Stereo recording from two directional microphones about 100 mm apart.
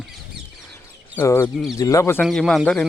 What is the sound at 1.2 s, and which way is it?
Speech, 25° left (ahead or behind).